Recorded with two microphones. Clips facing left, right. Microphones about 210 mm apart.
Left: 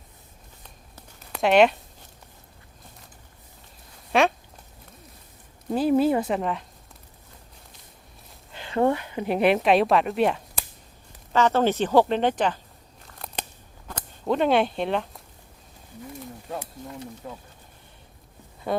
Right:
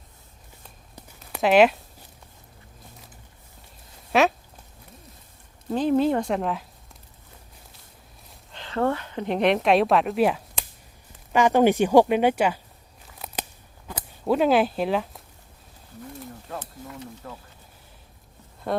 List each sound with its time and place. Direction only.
1.3 s speech: centre (ahead or behind)
4.1 s a sound: centre (ahead or behind)
5.7 s speech: 5° left (ahead or behind)
8.5 s speech: 15° left (ahead or behind); by 10.4 s 5° right (ahead or behind)
11.3 s speech: 15° right (ahead or behind)
13.1 s scissors: 5° right (ahead or behind)
13.8 s speech: 5° right (ahead or behind)
17.2 s speech: 15° left (ahead or behind)
18.7 s speech: centre (ahead or behind)